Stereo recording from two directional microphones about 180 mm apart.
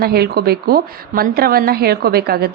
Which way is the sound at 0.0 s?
60° right (ahead or behind).